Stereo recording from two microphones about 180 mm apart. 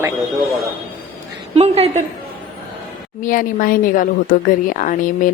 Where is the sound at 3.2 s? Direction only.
50° left (ahead or behind).